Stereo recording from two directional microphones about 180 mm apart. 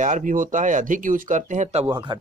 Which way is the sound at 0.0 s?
45° right (ahead or behind).